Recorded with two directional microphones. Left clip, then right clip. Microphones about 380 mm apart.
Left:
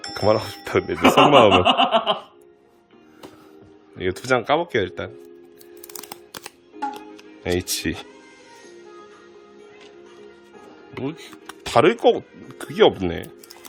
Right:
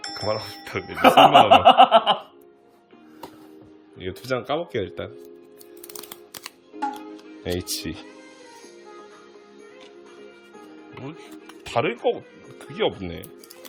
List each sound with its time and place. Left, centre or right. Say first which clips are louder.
0.1 s speech: left 8 dB; centre
1.0 s speech: right 1 dB; centre
3.9 s speech: left 7 dB; centre
7.4 s speech: left 5 dB; centre
10.9 s speech: left 8 dB; centre